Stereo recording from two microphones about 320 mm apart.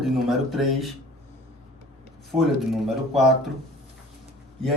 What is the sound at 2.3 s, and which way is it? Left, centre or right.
Speech, centre.